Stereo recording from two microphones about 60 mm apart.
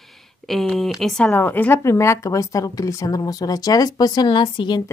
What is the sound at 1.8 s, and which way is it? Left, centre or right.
Speech, left.